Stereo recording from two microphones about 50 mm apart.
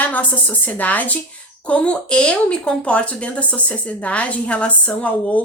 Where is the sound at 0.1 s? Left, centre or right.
Left.